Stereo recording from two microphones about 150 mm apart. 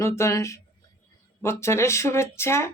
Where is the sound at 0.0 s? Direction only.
20° left (ahead or behind).